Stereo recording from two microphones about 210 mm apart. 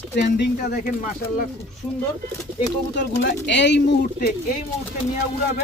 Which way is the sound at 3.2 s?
55° left (ahead or behind).